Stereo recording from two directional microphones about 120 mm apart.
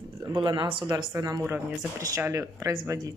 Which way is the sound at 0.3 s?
40° right (ahead or behind).